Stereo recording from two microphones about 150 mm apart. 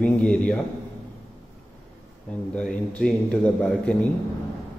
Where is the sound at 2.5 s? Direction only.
5° left (ahead or behind).